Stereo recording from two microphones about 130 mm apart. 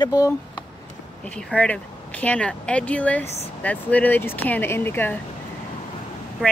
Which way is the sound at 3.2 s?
55° left (ahead or behind).